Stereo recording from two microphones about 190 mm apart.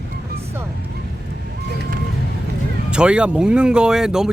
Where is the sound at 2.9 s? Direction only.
5° right (ahead or behind).